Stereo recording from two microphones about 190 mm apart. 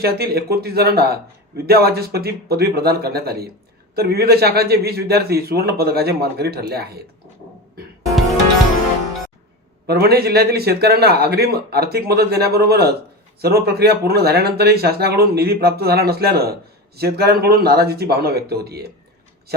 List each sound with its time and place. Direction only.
0.0 s speech: 55° right (ahead or behind)
9.8 s speech: 55° right (ahead or behind)